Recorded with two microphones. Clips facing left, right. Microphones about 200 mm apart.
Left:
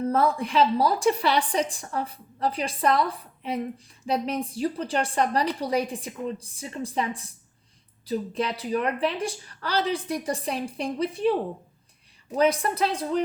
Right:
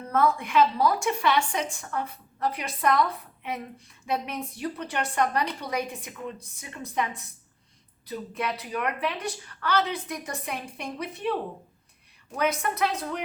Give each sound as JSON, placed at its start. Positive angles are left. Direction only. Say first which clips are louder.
{"t": 0.0, "sound": "a woman's voice", "louder": "left 2 dB", "side_deg": 30}
{"t": 12.4, "sound": "a woman's voice", "louder": "left 4 dB", "side_deg": 30}